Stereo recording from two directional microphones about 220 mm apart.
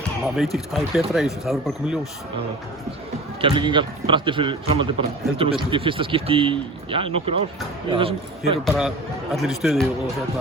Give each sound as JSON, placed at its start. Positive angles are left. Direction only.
{"t": 0.3, "sound": "speech", "side_deg": 0}
{"t": 3.4, "sound": "speech", "side_deg": -25}
{"t": 8.6, "sound": "speech", "side_deg": 0}